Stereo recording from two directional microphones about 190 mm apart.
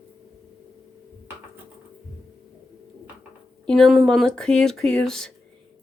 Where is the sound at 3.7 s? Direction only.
Centre (ahead or behind).